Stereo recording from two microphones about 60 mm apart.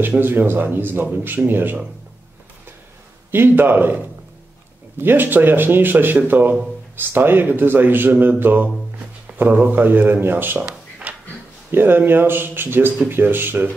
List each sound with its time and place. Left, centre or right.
0.2 s speech: right
3.3 s speech: right
5.0 s speech: right
10.7 s a sound: right
11.7 s speech: right